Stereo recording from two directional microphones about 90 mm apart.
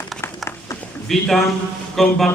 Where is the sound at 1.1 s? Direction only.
Centre (ahead or behind).